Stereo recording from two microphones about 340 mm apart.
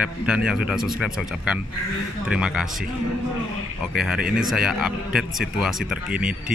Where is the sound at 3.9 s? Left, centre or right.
Centre.